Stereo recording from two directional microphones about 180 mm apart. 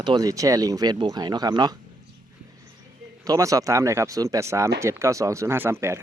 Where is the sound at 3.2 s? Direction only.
20° right (ahead or behind).